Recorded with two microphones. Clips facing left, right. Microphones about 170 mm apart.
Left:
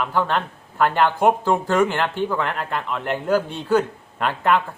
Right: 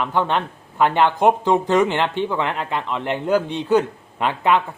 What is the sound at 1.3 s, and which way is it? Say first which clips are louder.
A man's voice: right 2 dB; 20° right (ahead or behind).